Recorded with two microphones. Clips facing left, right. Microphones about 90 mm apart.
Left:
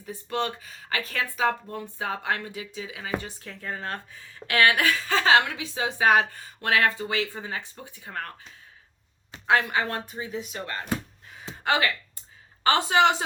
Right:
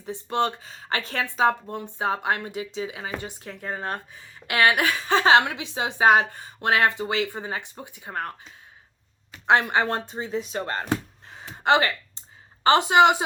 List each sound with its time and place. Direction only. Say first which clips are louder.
0.0 s a woman's voice: right 4 dB; 25° right (ahead or behind)
9.5 s speech: right 3 dB; 25° right (ahead or behind)
11.5 s a sound: right 4 dB; 25° right (ahead or behind)
12.6 s a woman's voice: right 4 dB; 20° right (ahead or behind)